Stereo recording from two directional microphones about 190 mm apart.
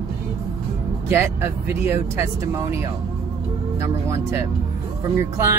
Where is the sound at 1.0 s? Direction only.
15° right (ahead or behind).